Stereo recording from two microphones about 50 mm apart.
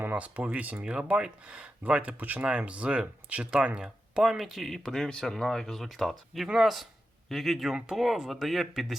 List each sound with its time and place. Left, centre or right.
0.0 s speech: right; by 4.3 s centre
4.3 s speech: centre
4.7 s speech: centre